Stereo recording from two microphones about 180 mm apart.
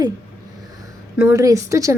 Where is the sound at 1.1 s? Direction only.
15° right (ahead or behind).